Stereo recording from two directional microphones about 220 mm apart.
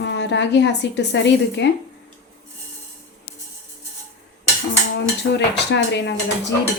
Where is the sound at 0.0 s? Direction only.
50° left (ahead or behind).